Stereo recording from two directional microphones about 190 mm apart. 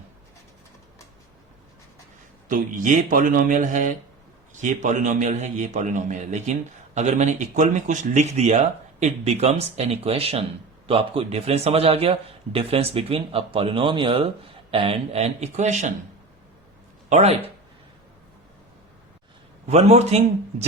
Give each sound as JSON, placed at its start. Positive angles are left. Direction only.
{"t": 2.5, "sound": "a man's voice", "side_deg": -45}
{"t": 17.1, "sound": "a man's voice", "side_deg": -35}
{"t": 19.6, "sound": "a man's voice", "side_deg": -35}